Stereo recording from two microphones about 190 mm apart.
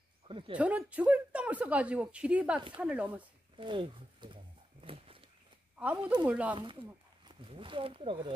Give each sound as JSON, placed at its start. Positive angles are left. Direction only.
{"t": 0.3, "sound": "speech", "side_deg": -25}
{"t": 0.6, "sound": "speech", "side_deg": -5}
{"t": 3.5, "sound": "speech", "side_deg": -25}
{"t": 4.8, "sound": "walk", "side_deg": -30}
{"t": 5.8, "sound": "speech", "side_deg": -5}
{"t": 6.5, "sound": "speech", "side_deg": -25}